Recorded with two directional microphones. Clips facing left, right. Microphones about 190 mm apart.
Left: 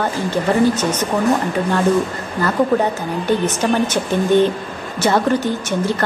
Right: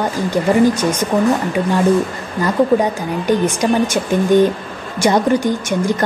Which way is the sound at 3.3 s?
10° right (ahead or behind).